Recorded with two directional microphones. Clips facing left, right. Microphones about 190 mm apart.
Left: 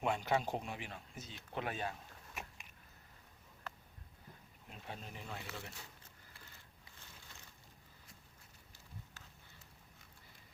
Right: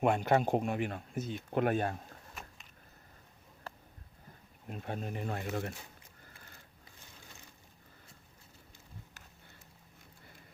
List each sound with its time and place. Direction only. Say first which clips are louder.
0.0 s speech: right 7 dB; 55° right (ahead or behind)
4.7 s speech: right 10 dB; 50° right (ahead or behind)